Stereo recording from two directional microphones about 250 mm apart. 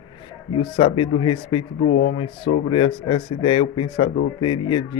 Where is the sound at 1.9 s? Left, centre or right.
Left.